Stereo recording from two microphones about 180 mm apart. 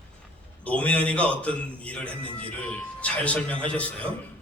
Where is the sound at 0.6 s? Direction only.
5° left (ahead or behind).